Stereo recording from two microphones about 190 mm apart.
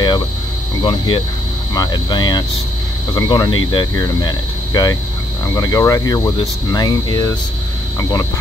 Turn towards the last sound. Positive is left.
turn(degrees=20)  # may be behind; listen again after turning